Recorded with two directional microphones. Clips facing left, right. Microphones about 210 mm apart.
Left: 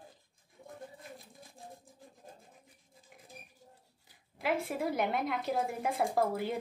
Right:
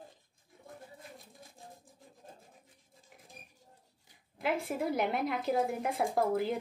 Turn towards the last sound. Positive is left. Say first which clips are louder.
# right 1 dB
turn(degrees=0)  # may be behind; listen again after turning